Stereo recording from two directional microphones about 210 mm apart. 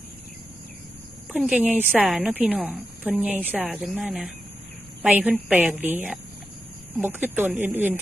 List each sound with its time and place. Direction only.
1.3 s a woman's voice: 5° right (ahead or behind)